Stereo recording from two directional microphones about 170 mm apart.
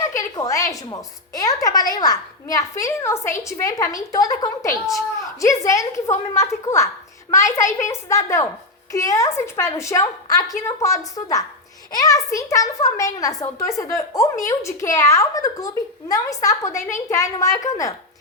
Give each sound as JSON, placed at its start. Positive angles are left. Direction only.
{"t": 0.1, "sound": "a woman's voice", "side_deg": 20}